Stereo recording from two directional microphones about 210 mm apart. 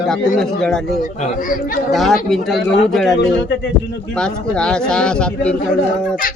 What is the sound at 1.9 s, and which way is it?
Speech, centre (ahead or behind).